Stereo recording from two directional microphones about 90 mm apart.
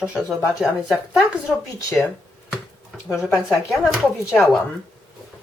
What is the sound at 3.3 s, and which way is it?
Speech, centre (ahead or behind).